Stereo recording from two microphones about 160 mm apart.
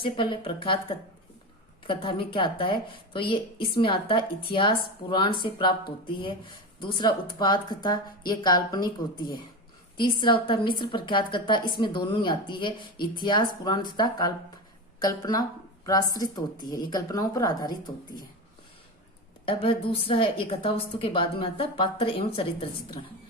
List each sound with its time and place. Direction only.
0.0 s a woman's voice: 35° left (ahead or behind)
6.7 s a woman's voice: 30° left (ahead or behind)
19.5 s a woman's voice: 35° left (ahead or behind)